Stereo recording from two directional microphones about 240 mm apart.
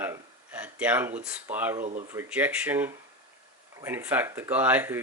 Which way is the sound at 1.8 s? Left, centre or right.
Right.